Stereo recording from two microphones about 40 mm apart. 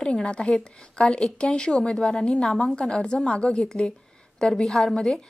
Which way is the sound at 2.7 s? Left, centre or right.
Left.